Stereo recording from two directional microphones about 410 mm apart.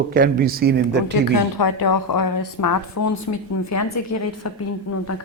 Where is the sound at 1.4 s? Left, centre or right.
Left.